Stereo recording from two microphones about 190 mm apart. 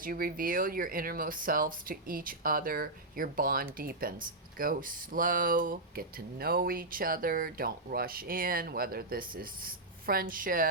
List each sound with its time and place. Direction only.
0.0 s speech: 50° right (ahead or behind)